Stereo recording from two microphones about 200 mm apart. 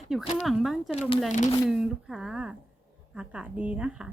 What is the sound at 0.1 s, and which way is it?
Speech, centre (ahead or behind).